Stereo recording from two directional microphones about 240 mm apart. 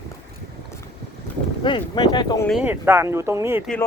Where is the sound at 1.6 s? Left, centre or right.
Centre.